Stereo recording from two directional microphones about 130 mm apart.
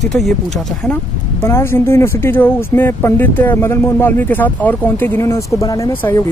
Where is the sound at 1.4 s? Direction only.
20° left (ahead or behind).